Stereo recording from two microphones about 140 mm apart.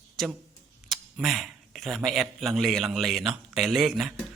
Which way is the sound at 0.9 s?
Centre (ahead or behind).